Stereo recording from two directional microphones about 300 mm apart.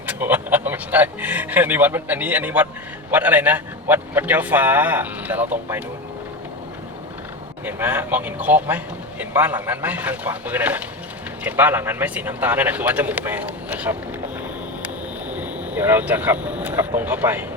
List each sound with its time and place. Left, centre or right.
0.0 s speech: centre
7.6 s speech: centre
15.3 s speech: centre